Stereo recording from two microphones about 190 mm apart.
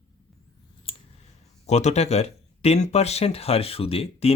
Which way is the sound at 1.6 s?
35° left (ahead or behind).